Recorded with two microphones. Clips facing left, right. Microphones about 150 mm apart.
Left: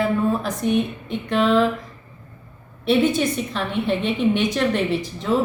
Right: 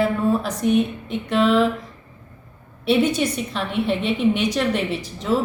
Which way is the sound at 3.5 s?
Centre (ahead or behind).